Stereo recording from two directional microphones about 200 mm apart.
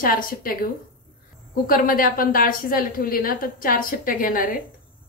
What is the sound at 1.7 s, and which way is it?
A woman's voice, 45° left (ahead or behind).